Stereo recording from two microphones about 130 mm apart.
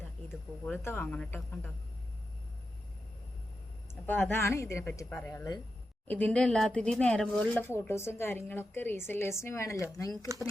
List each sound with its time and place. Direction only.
0.6 s speech: 15° left (ahead or behind)
4.0 s speech: 15° left (ahead or behind)
7.6 s speech: 20° left (ahead or behind)
10.3 s speech: 25° right (ahead or behind)